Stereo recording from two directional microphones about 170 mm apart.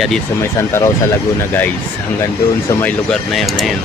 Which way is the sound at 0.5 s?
15° left (ahead or behind).